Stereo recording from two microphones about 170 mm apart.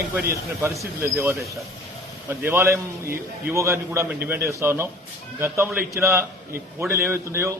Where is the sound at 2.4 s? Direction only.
15° right (ahead or behind).